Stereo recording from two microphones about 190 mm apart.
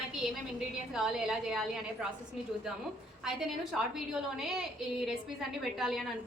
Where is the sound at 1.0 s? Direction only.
5° right (ahead or behind).